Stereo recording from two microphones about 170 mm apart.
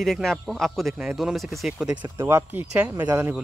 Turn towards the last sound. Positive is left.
turn(degrees=-15)  # may be behind; listen again after turning